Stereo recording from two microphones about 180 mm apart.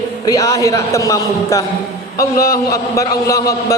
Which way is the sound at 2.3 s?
55° left (ahead or behind).